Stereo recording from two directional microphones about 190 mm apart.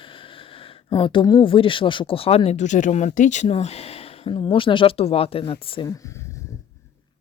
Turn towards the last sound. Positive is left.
turn(degrees=15)  # may be behind; listen again after turning